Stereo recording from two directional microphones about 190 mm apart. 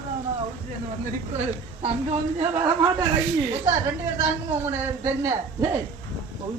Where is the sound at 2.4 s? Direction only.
25° right (ahead or behind).